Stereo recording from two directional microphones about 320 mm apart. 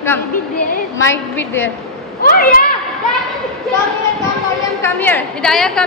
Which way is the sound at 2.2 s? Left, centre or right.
Left.